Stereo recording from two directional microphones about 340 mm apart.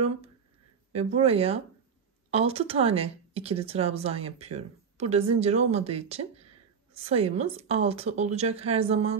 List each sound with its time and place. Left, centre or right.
0.9 s speech: centre